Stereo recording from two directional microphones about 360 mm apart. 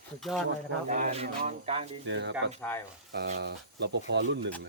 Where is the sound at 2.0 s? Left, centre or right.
Right.